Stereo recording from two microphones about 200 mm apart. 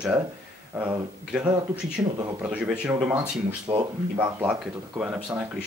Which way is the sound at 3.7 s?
25° right (ahead or behind).